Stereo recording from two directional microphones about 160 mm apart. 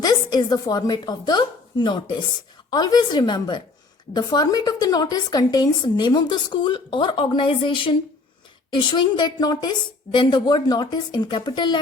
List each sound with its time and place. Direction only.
0.0 s a woman's voice: 25° left (ahead or behind)